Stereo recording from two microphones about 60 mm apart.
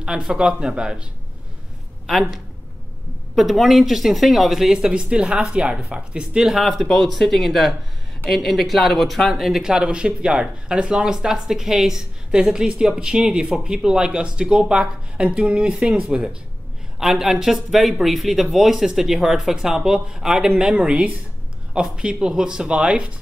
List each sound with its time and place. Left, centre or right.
0.0 s speech: centre
2.0 s speech: centre
6.5 s speech: centre